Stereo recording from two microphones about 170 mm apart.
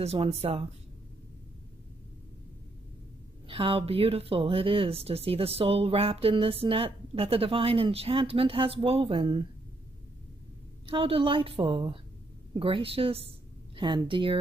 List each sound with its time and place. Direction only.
0.0 s speech: 35° right (ahead or behind)
3.4 s speech: 30° right (ahead or behind)
10.9 s speech: 35° right (ahead or behind)